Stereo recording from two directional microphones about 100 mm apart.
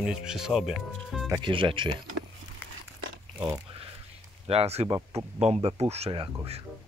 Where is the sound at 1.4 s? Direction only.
60° right (ahead or behind).